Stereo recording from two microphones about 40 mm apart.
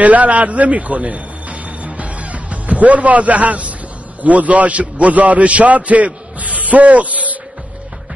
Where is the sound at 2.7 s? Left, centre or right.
Right.